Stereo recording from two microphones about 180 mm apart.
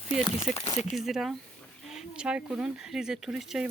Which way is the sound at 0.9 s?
Centre (ahead or behind).